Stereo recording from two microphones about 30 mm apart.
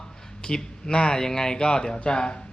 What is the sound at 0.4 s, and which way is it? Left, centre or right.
Speech, left.